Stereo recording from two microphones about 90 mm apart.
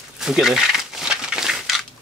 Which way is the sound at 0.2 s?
5° right (ahead or behind).